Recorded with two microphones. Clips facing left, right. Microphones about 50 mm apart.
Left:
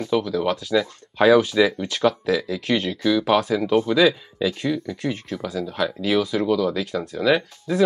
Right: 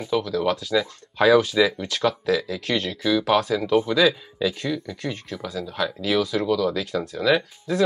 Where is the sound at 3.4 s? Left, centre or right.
Left.